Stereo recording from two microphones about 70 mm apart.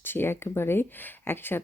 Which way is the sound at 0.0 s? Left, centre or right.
Left.